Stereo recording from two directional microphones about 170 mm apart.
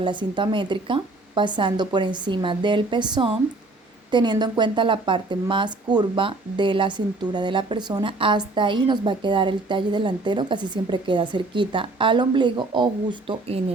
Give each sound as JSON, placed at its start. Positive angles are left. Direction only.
{"t": 0.0, "sound": "speech", "side_deg": -30}